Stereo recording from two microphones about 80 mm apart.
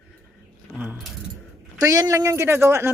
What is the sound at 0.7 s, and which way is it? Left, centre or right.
Keys jangling, right.